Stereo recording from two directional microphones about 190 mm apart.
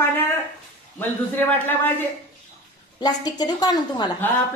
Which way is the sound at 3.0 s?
20° left (ahead or behind).